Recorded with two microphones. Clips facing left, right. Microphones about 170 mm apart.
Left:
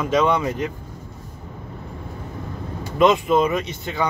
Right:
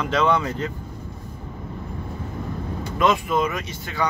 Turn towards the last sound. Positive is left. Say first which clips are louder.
# left 2 dB
turn(degrees=20)  # may be behind; listen again after turning